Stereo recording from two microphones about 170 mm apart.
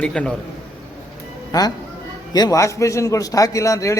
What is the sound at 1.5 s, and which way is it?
A man's voice, 20° left (ahead or behind).